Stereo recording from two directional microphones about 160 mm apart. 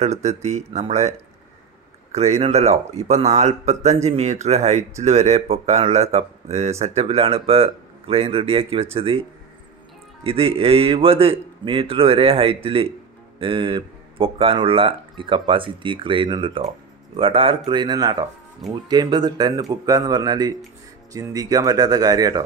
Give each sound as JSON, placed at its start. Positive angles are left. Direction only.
{"t": 0.0, "sound": "speech", "side_deg": -45}
{"t": 2.1, "sound": "speech", "side_deg": -40}
{"t": 10.2, "sound": "speech", "side_deg": -35}